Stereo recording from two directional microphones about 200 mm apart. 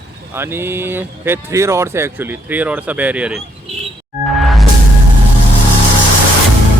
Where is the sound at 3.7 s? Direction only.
30° right (ahead or behind).